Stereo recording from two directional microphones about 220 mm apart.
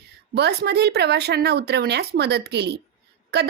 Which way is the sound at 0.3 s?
50° right (ahead or behind).